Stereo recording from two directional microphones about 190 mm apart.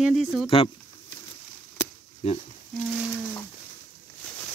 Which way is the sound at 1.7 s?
35° left (ahead or behind).